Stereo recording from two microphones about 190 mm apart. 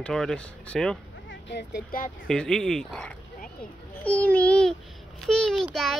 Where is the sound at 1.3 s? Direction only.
70° left (ahead or behind).